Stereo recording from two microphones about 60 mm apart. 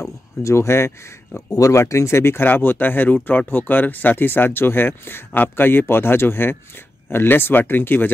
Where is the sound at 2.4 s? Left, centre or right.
Left.